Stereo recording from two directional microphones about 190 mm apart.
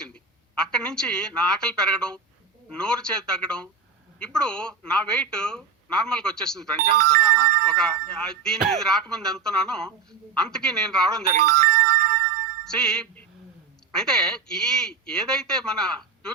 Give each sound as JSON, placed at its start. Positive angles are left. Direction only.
{"t": 0.0, "sound": "a woman's voice", "side_deg": 5}
{"t": 11.3, "sound": "music", "side_deg": -50}
{"t": 12.6, "sound": "music", "side_deg": 5}
{"t": 13.9, "sound": "speech", "side_deg": 5}